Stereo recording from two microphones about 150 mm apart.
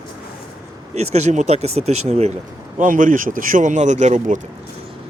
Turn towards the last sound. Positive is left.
turn(degrees=-60)  # may be behind; listen again after turning